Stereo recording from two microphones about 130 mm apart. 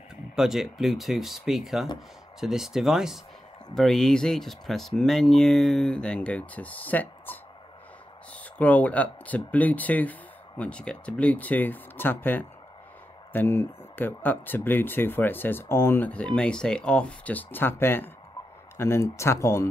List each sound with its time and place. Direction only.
0.4 s speech: centre (ahead or behind); by 19.7 s 20° left (ahead or behind)